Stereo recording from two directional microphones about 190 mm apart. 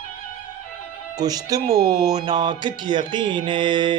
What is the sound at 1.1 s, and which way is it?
Speech, 20° right (ahead or behind).